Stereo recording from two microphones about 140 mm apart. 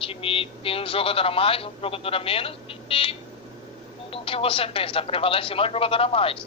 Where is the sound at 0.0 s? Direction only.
40° left (ahead or behind).